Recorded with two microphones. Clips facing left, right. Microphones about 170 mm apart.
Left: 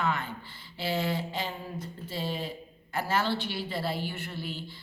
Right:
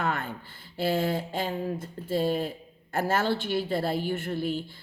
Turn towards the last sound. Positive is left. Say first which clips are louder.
# right 9 dB
turn(degrees=-50)  # may be behind; listen again after turning